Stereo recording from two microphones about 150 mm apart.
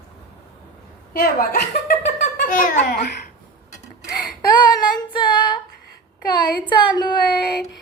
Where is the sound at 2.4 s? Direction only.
65° left (ahead or behind).